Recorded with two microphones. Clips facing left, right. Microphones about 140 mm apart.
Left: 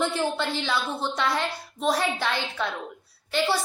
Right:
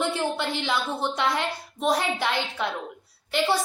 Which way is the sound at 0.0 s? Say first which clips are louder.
Even; 15° right (ahead or behind).